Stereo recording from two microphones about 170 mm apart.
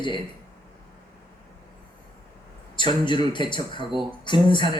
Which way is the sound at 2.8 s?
30° left (ahead or behind).